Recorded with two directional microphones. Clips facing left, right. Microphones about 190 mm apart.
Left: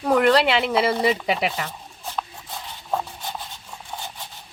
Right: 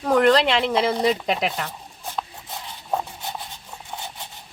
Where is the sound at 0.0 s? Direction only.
5° left (ahead or behind).